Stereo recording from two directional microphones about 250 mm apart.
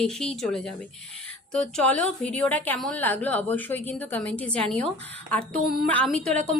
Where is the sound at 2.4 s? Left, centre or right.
Centre.